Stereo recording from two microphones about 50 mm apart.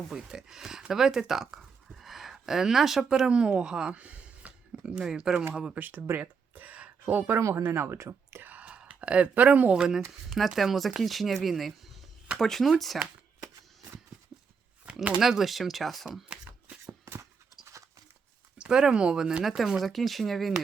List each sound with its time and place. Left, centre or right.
0.2 s speech: centre
3.9 s a sound: right
5.0 s speech: centre
6.1 s a sound: right
7.0 s speech: right
7.3 s speech: right
8.4 s whispering: right
8.6 s whispering: right
9.3 s speech: right; by 10.0 s centre
10.1 s speech: centre
15.2 s speech: centre
16.0 s speech: centre
18.5 s speech: centre
19.5 s speech: centre